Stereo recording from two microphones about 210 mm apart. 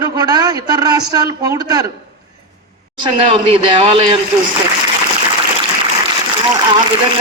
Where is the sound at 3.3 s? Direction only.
25° right (ahead or behind).